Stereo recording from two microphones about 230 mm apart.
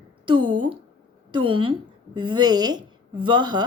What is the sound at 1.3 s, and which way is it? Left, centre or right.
A woman's voice, right.